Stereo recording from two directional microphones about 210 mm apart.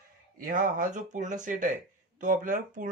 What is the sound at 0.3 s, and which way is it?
A man's voice, 40° right (ahead or behind).